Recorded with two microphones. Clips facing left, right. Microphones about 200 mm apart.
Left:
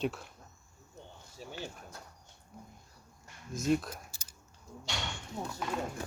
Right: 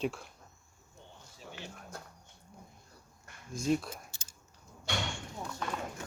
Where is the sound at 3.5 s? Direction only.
Centre (ahead or behind).